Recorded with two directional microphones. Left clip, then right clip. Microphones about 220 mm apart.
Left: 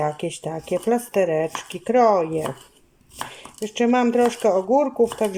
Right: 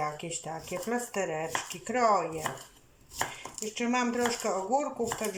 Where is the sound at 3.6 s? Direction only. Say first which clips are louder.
Left 10 dB; 45° left (ahead or behind).